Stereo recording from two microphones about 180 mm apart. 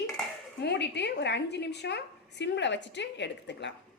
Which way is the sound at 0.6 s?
70° left (ahead or behind).